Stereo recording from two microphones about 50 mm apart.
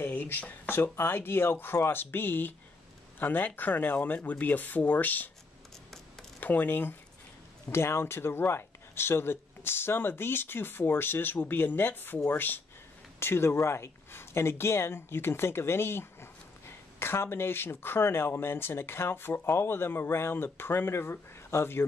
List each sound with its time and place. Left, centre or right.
0.0 s a sound: left
0.9 s speech: left
6.4 s speech: left
7.7 s speech: left
13.2 s speech: left
14.1 s speech: left